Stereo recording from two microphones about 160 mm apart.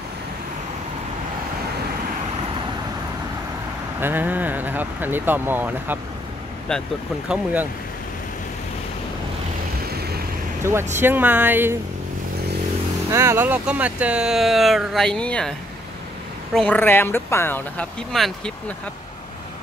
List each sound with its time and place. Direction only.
4.0 s speech: 10° right (ahead or behind)
6.7 s speech: 5° left (ahead or behind)
10.6 s speech: 15° right (ahead or behind)
13.1 s speech: 15° right (ahead or behind); by 15.5 s 5° left (ahead or behind)
16.5 s speech: 10° left (ahead or behind)
18.1 s speech: centre (ahead or behind)